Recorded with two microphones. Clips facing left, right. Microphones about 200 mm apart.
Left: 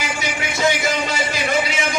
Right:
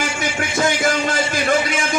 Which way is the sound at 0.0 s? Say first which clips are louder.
Right 2 dB; 50° right (ahead or behind).